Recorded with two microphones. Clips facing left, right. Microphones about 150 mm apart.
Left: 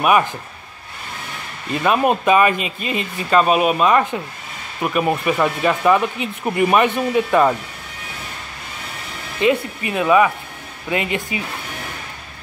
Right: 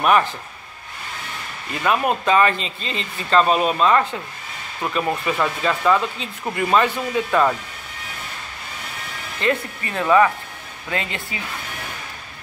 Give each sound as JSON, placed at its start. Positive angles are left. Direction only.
{"t": 0.0, "sound": "speech", "side_deg": 10}
{"t": 1.7, "sound": "speech", "side_deg": 20}
{"t": 9.4, "sound": "speech", "side_deg": 15}